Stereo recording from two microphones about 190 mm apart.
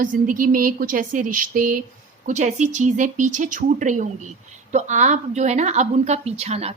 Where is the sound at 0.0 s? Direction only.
45° right (ahead or behind).